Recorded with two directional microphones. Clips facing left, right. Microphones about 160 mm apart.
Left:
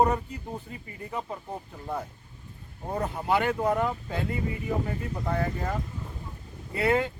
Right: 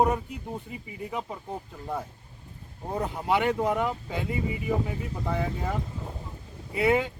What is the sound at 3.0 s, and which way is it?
Speech, 15° right (ahead or behind).